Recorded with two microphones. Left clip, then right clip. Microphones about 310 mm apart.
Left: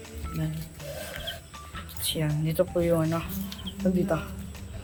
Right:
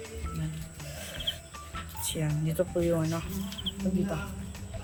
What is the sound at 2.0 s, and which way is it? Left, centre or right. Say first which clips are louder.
Speech: left 5 dB; centre.